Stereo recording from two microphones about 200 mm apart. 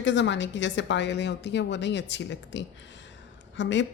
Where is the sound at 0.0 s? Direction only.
65° left (ahead or behind).